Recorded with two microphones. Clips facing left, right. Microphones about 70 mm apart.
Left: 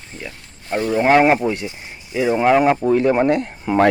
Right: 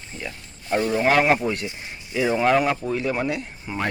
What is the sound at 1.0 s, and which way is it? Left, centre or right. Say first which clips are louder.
Speech: left 6 dB; left.